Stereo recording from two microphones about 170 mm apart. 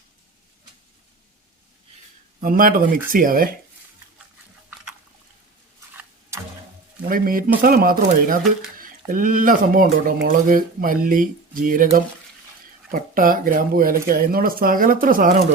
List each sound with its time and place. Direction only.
2.4 s speech: 55° right (ahead or behind)
7.1 s speech: 55° right (ahead or behind)